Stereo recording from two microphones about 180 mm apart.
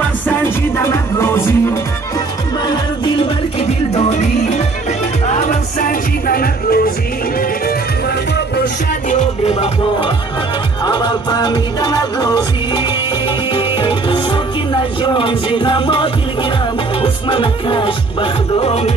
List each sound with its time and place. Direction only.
0.0 s music: 10° left (ahead or behind)
2.7 s music: 30° left (ahead or behind); by 6.9 s 55° left (ahead or behind)
9.1 s music: 35° left (ahead or behind)